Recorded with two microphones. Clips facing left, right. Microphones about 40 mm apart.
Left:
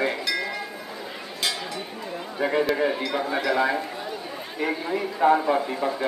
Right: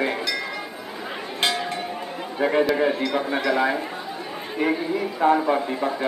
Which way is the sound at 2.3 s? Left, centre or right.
Centre.